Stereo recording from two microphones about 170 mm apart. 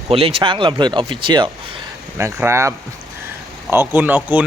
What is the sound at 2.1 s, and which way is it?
Speech, 15° right (ahead or behind).